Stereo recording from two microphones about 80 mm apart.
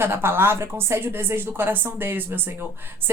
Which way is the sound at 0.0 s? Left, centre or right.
Right.